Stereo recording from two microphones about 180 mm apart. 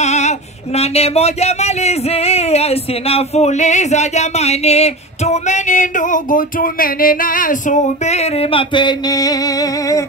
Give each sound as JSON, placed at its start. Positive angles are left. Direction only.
{"t": 0.0, "sound": "speech", "side_deg": 40}